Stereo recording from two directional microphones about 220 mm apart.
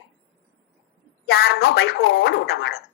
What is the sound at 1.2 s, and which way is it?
A man's voice, 45° left (ahead or behind).